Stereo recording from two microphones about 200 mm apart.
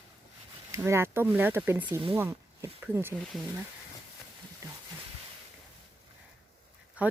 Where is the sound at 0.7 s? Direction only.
15° right (ahead or behind).